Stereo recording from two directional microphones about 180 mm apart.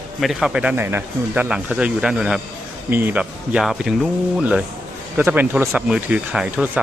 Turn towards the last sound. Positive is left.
turn(degrees=-5)  # may be behind; listen again after turning